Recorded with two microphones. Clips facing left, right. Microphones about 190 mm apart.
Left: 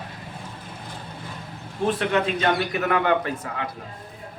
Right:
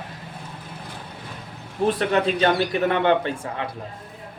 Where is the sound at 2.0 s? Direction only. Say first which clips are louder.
Right 3 dB; 35° right (ahead or behind).